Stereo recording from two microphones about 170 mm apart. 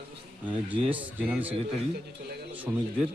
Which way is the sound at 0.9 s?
10° right (ahead or behind).